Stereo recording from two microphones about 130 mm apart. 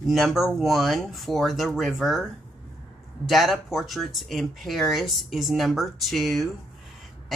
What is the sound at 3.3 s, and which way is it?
Speech, centre (ahead or behind).